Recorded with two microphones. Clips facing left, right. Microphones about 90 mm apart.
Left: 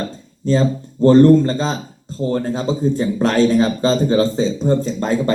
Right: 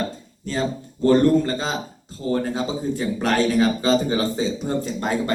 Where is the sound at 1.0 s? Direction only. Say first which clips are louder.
Left 6 dB; 25° left (ahead or behind).